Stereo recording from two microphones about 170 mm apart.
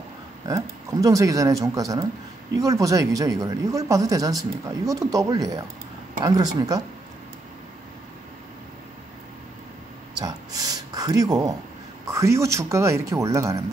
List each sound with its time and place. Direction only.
0.5 s speech: 20° right (ahead or behind)
10.1 s a sound: 20° right (ahead or behind)
12.1 s speech: 15° right (ahead or behind)